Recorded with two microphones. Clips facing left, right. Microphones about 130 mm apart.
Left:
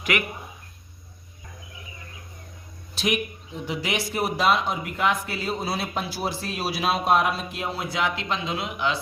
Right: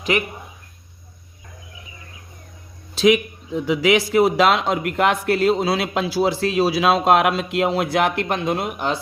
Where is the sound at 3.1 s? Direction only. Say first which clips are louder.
Right 10 dB; 90° right.